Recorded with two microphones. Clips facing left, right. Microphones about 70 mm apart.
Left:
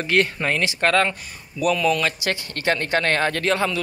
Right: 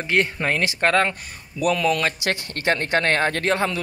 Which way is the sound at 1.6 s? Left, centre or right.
Right.